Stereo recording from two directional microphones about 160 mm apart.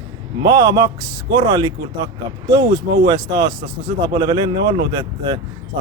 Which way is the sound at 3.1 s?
25° right (ahead or behind).